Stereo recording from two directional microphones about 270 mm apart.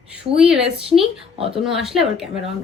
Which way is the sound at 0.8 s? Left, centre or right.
Centre.